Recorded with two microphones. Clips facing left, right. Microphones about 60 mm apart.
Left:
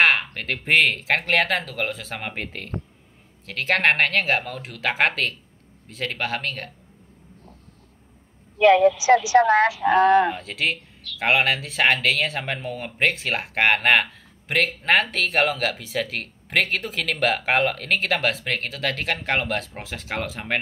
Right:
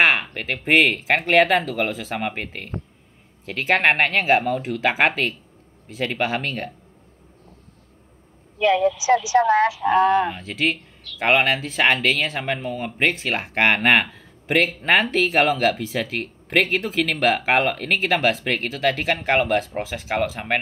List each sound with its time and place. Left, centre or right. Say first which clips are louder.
0.0 s speech: right 1 dB; centre
8.5 s speech: left 3 dB; left
10.3 s speech: right 2 dB; centre